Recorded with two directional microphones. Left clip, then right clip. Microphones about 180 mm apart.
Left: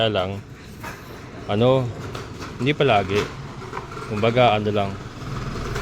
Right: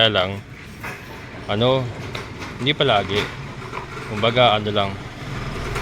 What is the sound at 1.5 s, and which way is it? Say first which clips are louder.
Speech: even; 30° left (ahead or behind).